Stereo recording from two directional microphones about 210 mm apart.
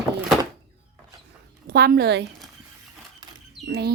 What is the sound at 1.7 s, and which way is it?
Speech, 45° right (ahead or behind).